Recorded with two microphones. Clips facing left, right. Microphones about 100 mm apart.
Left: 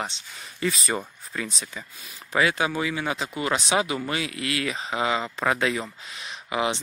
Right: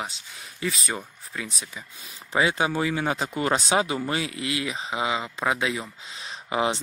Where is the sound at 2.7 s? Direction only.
35° right (ahead or behind); by 5.8 s 10° right (ahead or behind).